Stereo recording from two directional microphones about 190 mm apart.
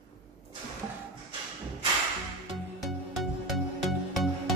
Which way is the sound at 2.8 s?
Centre (ahead or behind).